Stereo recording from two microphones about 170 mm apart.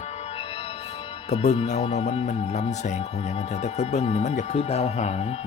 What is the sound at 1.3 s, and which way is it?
Speech, 40° left (ahead or behind).